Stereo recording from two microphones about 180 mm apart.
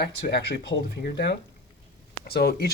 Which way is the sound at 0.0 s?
70° left (ahead or behind).